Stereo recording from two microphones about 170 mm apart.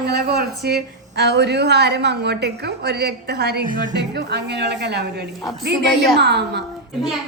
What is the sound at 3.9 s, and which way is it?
A woman's voice, 75° right (ahead or behind).